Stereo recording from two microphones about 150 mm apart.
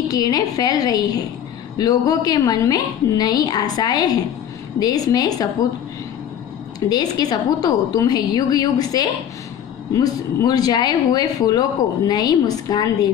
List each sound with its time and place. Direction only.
0.1 s a woman's voice: 25° left (ahead or behind)
6.9 s a woman's voice: 25° left (ahead or behind)